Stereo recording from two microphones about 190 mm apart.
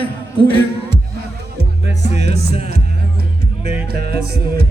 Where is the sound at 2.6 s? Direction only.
55° right (ahead or behind).